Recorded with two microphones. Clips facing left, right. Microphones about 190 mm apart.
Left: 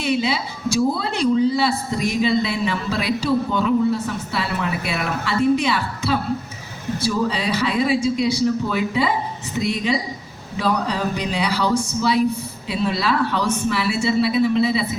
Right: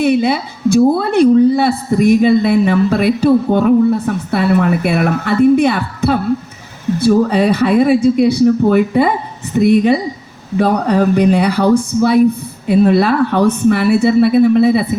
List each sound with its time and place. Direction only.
0.0 s a woman's voice: 55° right (ahead or behind)